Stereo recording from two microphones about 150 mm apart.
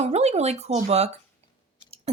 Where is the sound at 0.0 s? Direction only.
45° right (ahead or behind).